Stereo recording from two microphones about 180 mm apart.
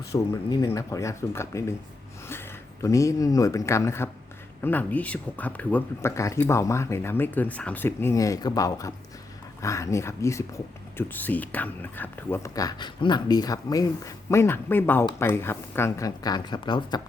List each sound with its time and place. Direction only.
0.1 s speech: 15° left (ahead or behind)